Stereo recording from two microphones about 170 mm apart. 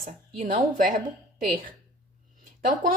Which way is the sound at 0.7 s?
55° right (ahead or behind).